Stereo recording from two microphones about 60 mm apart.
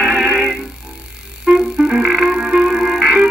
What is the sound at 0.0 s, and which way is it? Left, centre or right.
Music, centre.